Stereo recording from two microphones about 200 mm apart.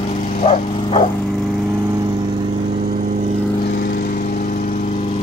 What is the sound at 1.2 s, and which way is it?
Dog, centre (ahead or behind).